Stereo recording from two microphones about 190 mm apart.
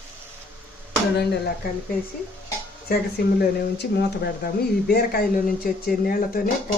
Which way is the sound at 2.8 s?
55° left (ahead or behind).